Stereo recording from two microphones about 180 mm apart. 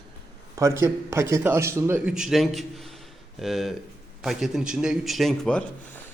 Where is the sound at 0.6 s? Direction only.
15° right (ahead or behind).